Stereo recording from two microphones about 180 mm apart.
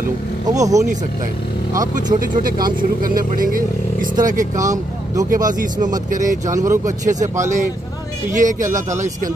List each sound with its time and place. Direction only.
0.6 s speech: 20° right (ahead or behind)
2.1 s speech: 50° right (ahead or behind)
6.5 s speech: 15° right (ahead or behind)
7.1 s speech: 40° right (ahead or behind)